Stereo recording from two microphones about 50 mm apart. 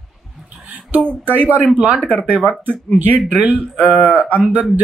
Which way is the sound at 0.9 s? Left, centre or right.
Right.